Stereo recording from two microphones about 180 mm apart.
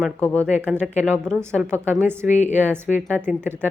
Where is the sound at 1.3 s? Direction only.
15° right (ahead or behind).